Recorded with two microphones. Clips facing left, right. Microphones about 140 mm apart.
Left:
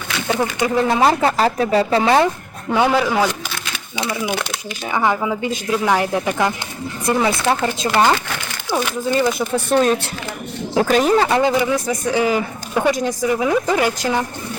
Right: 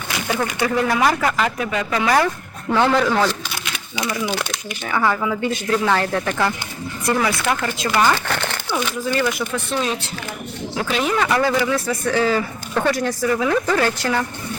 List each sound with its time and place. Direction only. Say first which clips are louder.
0.3 s speech: left 2 dB; 25° left (ahead or behind)
2.6 s speech: even; 10° left (ahead or behind)
3.9 s speech: left 1 dB; 25° left (ahead or behind)
9.1 s speech: left 5 dB; 30° left (ahead or behind)
9.6 s speech: left 7 dB; 50° left (ahead or behind); by 14.3 s 15° left (ahead or behind)